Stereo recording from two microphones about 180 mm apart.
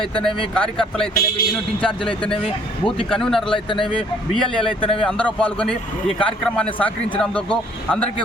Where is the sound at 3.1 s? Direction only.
5° left (ahead or behind).